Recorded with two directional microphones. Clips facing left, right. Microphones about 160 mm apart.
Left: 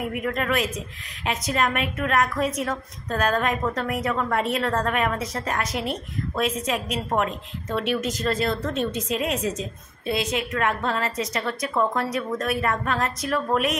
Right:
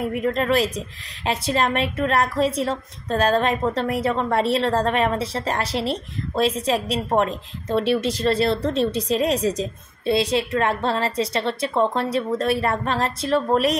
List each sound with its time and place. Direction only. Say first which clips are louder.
0.0 s a woman's voice: right 4 dB; 30° right (ahead or behind)